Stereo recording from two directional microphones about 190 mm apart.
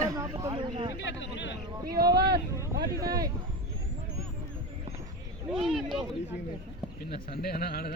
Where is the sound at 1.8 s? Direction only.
50° right (ahead or behind).